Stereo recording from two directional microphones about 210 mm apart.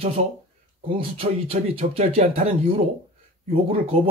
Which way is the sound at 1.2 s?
30° right (ahead or behind).